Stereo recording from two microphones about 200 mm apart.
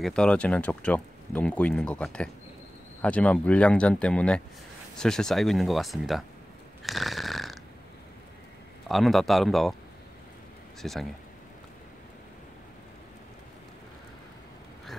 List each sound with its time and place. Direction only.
0.0 s speech: 5° left (ahead or behind)
6.8 s snoring: centre (ahead or behind)
8.8 s speech: centre (ahead or behind)
10.8 s speech: centre (ahead or behind)